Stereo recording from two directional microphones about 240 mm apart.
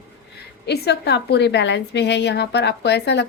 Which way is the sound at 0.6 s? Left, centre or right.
Left.